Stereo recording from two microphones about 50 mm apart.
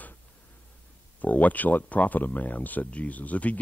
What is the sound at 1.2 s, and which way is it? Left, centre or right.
Speech, left.